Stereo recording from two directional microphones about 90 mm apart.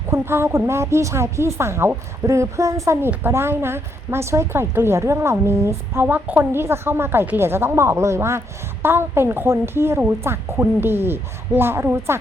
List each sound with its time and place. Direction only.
0.1 s a woman's voice: 30° right (ahead or behind)